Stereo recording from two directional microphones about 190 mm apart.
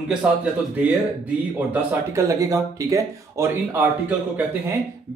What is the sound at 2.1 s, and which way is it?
Speech, 15° right (ahead or behind).